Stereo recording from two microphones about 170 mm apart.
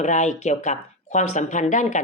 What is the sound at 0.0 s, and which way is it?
Speech, 45° left (ahead or behind).